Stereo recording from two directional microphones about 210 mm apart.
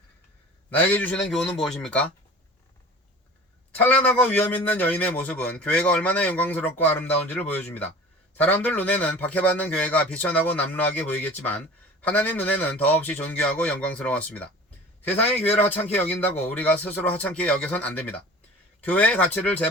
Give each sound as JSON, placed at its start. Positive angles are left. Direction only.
{"t": 0.9, "sound": "a man's voice", "side_deg": 5}
{"t": 3.8, "sound": "a man's voice", "side_deg": 10}